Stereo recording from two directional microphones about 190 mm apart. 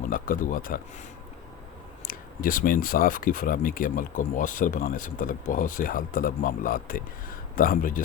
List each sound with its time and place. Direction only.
0.1 s speech: 45° left (ahead or behind)
2.0 s speech: 45° left (ahead or behind)